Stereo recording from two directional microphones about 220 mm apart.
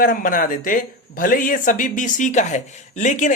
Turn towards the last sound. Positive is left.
turn(degrees=35)  # may be behind; listen again after turning